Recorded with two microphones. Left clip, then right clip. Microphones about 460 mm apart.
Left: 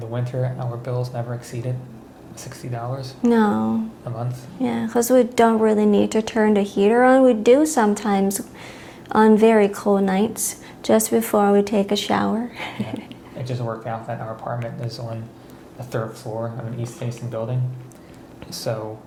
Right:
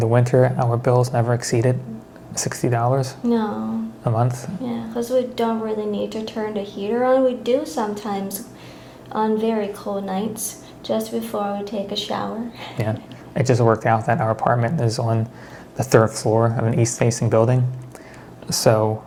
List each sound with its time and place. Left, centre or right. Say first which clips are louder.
0.0 s speech: right 11 dB; right
3.2 s speech: left 5 dB; left
4.1 s speech: right 10 dB; right
4.6 s speech: left 6 dB; left
13.4 s speech: right 12 dB; right
18.4 s speech: right 10 dB; right